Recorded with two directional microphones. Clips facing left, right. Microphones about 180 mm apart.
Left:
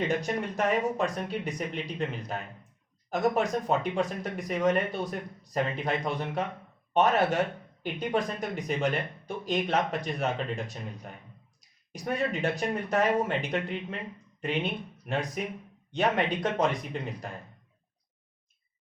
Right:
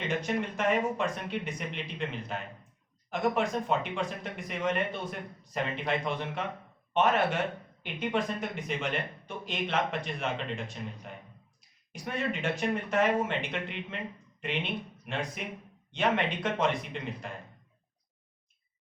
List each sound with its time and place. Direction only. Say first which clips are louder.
0.1 s speech: left 2 dB; 40° left (ahead or behind)